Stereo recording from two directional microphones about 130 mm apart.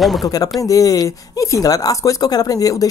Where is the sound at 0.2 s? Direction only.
30° left (ahead or behind).